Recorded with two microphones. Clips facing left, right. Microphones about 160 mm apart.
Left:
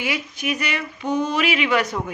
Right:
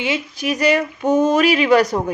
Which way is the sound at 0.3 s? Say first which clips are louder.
Right 9 dB; 35° right (ahead or behind).